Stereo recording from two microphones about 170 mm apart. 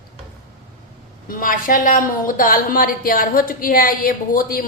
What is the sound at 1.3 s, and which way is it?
A woman's voice, 55° left (ahead or behind).